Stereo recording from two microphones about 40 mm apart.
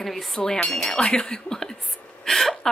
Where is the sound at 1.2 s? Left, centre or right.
Centre.